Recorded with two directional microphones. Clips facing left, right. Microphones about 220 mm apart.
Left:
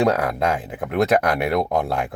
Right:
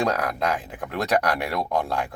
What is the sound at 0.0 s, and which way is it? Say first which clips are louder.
Speech: left 5 dB; 25° left (ahead or behind).